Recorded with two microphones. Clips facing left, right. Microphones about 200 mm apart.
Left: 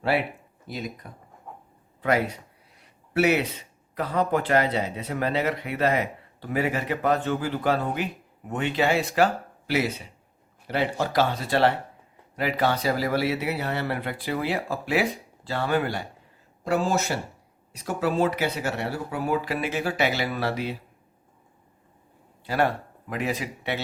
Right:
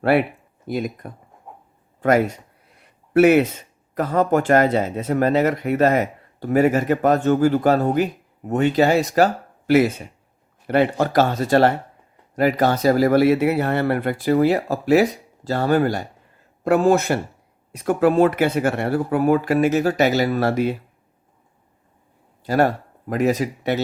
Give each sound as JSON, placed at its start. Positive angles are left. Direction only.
{"t": 0.0, "sound": "speech", "side_deg": -55}
{"t": 1.5, "sound": "dog", "side_deg": -15}
{"t": 2.0, "sound": "speech", "side_deg": -50}
{"t": 16.6, "sound": "speech", "side_deg": -55}
{"t": 22.4, "sound": "speech", "side_deg": -40}